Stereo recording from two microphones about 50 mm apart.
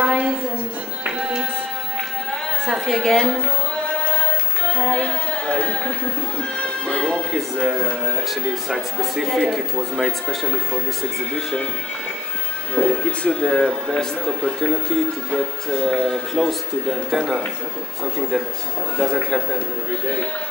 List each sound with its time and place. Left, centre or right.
0.0 s a sound: right
1.0 s music: centre
2.9 s speech: centre
4.7 s music: left
7.0 s music: centre
7.3 s speech: centre
12.7 s speech: left; by 17.2 s centre
18.9 s speech: centre